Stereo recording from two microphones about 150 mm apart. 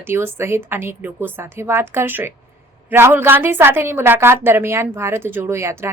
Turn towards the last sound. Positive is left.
turn(degrees=-15)  # may be behind; listen again after turning